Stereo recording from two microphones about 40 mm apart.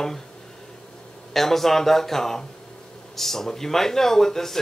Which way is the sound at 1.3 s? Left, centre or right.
Centre.